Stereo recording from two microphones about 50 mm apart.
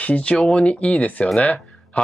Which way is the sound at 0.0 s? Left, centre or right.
Left.